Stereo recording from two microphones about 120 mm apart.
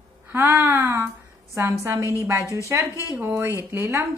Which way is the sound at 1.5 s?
25° right (ahead or behind).